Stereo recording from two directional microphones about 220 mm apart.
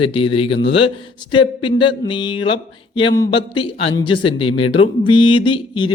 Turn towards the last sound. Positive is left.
turn(degrees=20)  # may be behind; listen again after turning